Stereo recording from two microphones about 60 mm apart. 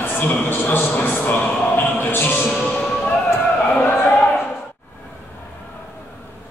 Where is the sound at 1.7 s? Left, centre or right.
Left.